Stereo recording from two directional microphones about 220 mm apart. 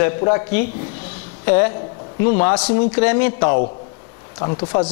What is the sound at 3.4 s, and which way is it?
Speech, 25° left (ahead or behind).